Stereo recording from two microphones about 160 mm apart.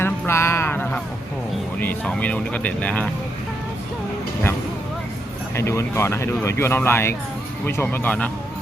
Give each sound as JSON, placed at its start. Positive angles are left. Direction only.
{"t": 0.0, "sound": "music", "side_deg": 15}
{"t": 1.8, "sound": "speech", "side_deg": 10}
{"t": 5.5, "sound": "speech", "side_deg": 15}